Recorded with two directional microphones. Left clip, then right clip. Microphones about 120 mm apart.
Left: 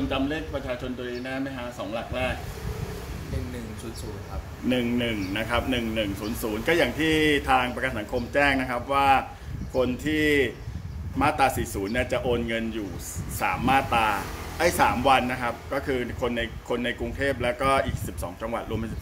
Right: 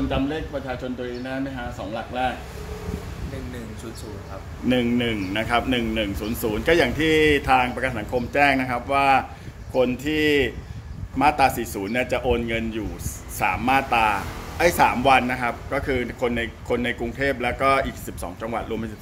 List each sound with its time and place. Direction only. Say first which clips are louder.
0.1 s a man's voice: right 2 dB; 40° right (ahead or behind)
4.6 s a man's voice: right 4 dB; 55° right (ahead or behind); by 18.9 s 35° right (ahead or behind)